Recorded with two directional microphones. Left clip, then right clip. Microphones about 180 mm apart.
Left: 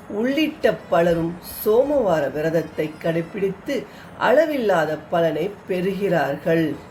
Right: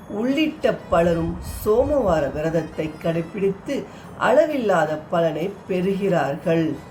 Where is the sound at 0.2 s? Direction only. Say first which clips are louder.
Left 1 dB; 15° left (ahead or behind).